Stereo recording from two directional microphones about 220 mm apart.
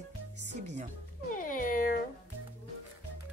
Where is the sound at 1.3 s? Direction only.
35° left (ahead or behind).